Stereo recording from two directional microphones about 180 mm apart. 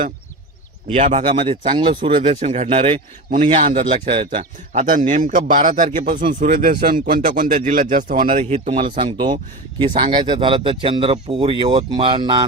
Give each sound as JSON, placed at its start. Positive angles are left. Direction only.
{"t": 0.9, "sound": "speech", "side_deg": -40}
{"t": 3.2, "sound": "speech", "side_deg": -45}
{"t": 3.7, "sound": "speech", "side_deg": -30}
{"t": 4.7, "sound": "speech", "side_deg": -45}